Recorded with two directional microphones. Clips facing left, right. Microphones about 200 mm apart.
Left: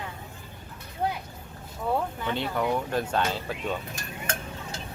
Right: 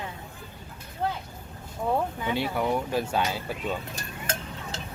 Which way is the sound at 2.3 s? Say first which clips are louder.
Even; 10° right (ahead or behind).